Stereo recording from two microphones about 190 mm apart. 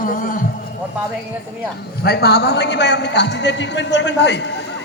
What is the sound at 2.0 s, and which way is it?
A man's voice, 60° left (ahead or behind).